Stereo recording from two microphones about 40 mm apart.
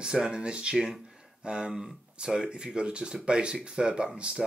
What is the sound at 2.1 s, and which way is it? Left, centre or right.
Speech, right.